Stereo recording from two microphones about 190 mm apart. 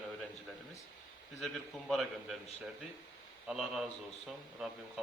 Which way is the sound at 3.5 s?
Centre (ahead or behind).